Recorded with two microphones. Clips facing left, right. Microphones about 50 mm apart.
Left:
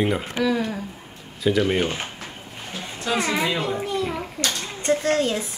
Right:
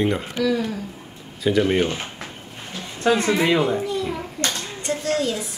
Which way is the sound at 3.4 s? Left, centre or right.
Right.